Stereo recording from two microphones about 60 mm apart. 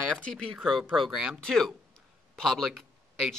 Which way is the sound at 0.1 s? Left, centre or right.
Centre.